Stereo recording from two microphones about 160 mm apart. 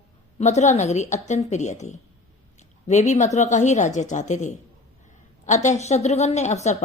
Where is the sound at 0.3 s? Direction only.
45° left (ahead or behind).